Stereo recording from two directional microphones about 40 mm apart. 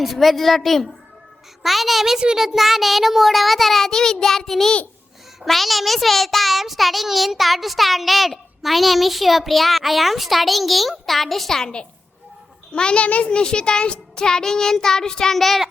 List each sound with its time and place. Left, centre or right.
0.0 s a child's voice: centre
12.7 s a child's voice: left; by 15.6 s centre